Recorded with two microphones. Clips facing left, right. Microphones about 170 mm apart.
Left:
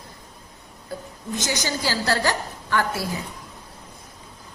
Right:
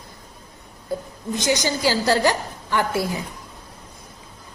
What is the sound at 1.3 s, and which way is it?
A woman's voice, 15° right (ahead or behind).